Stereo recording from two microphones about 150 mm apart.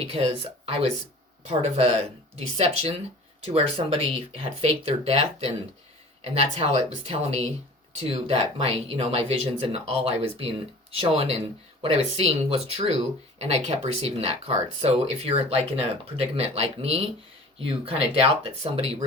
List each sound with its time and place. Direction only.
0.0 s speech: 40° right (ahead or behind)